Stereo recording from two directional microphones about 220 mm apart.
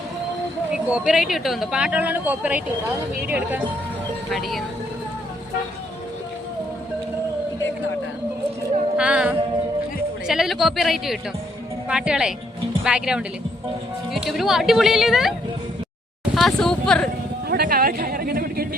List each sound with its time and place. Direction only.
0.9 s speech: 5° right (ahead or behind)
9.0 s speech: 5° right (ahead or behind)
17.5 s a sound: 45° right (ahead or behind)